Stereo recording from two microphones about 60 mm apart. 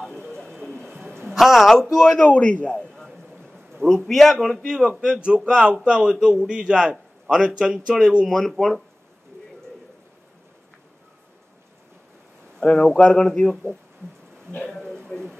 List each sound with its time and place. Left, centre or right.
0.0 s bird: centre
1.2 s a woman's voice: centre
2.0 s a man's voice: left
3.8 s a man's voice: centre
4.6 s a man's voice: centre
8.3 s a man's voice: centre
12.5 s speech: centre
14.7 s a sound: centre